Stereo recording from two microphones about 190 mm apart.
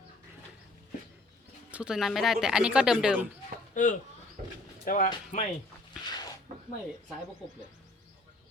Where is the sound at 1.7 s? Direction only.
5° right (ahead or behind).